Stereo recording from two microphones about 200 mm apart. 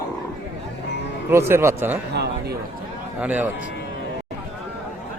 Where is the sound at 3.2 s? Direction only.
10° right (ahead or behind).